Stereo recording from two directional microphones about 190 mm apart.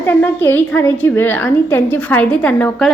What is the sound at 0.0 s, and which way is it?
A woman's voice, 10° left (ahead or behind).